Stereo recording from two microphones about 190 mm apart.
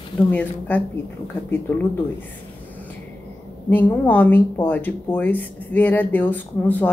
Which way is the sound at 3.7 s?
10° left (ahead or behind).